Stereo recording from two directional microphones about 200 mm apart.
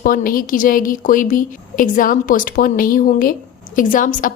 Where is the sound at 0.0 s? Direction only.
45° left (ahead or behind).